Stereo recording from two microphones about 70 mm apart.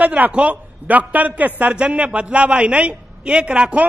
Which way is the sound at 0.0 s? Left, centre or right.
Right.